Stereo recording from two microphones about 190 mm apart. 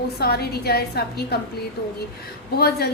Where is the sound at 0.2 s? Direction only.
55° left (ahead or behind).